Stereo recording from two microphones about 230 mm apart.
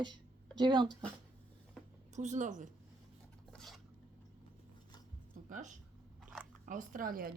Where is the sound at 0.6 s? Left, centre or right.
Centre.